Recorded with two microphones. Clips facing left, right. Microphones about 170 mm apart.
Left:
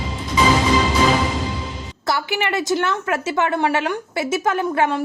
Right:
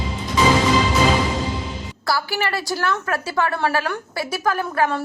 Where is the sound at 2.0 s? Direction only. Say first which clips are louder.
Left 1 dB; 20° left (ahead or behind).